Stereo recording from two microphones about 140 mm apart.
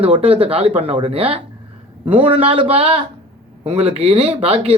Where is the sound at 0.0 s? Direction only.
45° right (ahead or behind).